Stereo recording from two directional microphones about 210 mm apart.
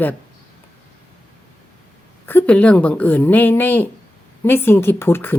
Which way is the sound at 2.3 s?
10° left (ahead or behind).